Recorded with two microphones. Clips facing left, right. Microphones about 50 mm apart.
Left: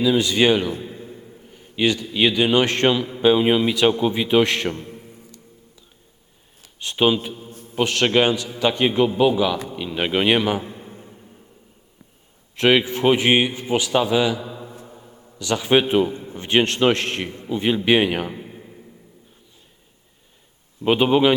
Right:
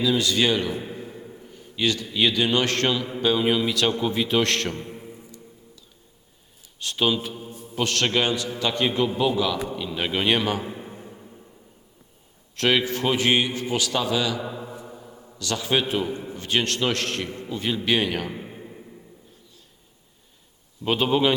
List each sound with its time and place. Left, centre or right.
0.0 s a man's voice: centre
6.7 s a man's voice: left
7.5 s mantra: left
7.8 s a man's voice: centre
10.6 s a sound: centre
12.5 s a man's voice: centre
15.4 s a man's voice: left
18.3 s a sound: centre
20.8 s a man's voice: centre